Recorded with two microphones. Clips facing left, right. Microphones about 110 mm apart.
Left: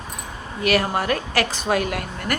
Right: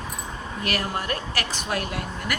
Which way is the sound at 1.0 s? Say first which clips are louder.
Left 7 dB; 90° left.